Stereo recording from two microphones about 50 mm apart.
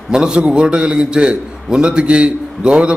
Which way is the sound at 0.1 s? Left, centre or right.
Centre.